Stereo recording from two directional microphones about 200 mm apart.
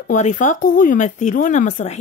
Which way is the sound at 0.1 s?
40° left (ahead or behind).